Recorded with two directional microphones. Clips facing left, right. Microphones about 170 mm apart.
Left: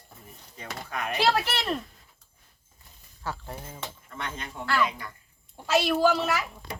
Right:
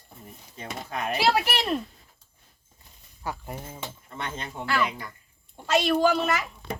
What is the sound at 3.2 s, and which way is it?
Speech, 15° right (ahead or behind).